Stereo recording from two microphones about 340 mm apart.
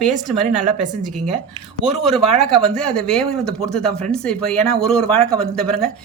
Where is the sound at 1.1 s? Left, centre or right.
Right.